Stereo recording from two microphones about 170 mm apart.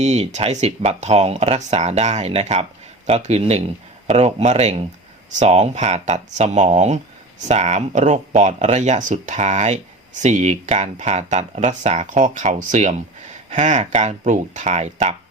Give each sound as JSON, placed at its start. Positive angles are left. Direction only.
{"t": 0.0, "sound": "speech", "side_deg": -40}